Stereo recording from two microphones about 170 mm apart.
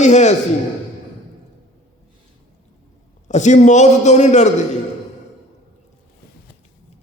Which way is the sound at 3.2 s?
45° left (ahead or behind).